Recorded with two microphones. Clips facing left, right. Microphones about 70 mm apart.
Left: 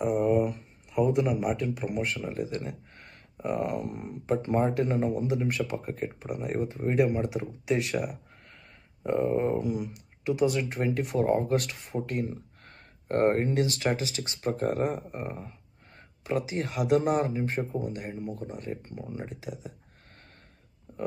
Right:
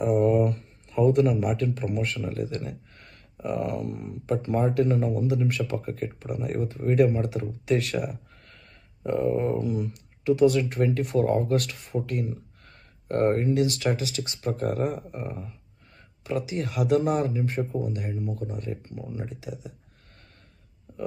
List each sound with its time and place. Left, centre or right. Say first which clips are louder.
0.0 s a sound: right 3 dB; centre
1.6 s speech: right 2 dB; centre
9.0 s speech: right 2 dB; centre
9.6 s speech: right 2 dB; centre